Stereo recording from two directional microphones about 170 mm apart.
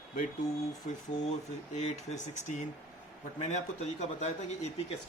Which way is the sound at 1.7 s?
45° left (ahead or behind).